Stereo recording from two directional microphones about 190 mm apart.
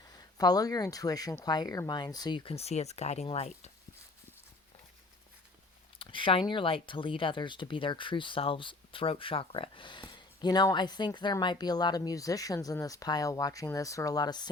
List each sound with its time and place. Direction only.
0.1 s speech: 20° left (ahead or behind)
6.0 s a sound: 25° left (ahead or behind)
6.5 s speech: 25° left (ahead or behind)